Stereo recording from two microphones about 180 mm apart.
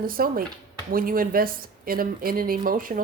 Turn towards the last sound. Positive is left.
turn(degrees=-50)  # may be behind; listen again after turning